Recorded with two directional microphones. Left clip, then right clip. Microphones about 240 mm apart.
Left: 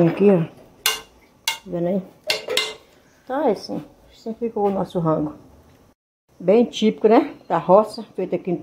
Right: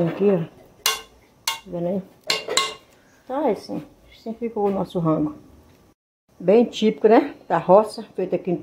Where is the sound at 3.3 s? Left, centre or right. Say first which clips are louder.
Left 2 dB; centre.